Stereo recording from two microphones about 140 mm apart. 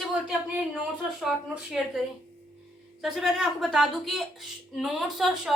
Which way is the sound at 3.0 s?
5° right (ahead or behind).